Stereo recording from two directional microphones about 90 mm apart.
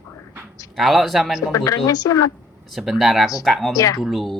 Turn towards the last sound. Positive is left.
turn(degrees=0)  # may be behind; listen again after turning